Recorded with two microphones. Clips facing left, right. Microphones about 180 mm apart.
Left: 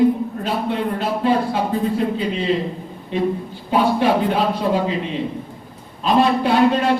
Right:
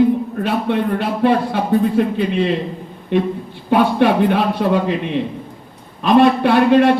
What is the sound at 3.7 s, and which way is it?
Speech, 65° right (ahead or behind).